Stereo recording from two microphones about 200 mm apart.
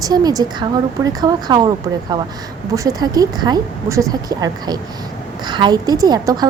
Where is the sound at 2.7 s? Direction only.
20° right (ahead or behind).